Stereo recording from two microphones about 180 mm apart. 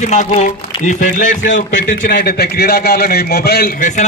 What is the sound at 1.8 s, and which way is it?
A man's voice, 55° left (ahead or behind).